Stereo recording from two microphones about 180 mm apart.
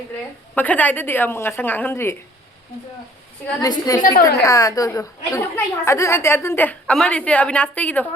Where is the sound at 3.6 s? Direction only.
20° left (ahead or behind).